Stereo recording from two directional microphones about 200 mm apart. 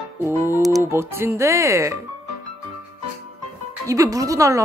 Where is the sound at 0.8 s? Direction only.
10° right (ahead or behind).